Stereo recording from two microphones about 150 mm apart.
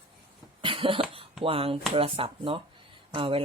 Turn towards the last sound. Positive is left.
turn(degrees=-35)  # may be behind; listen again after turning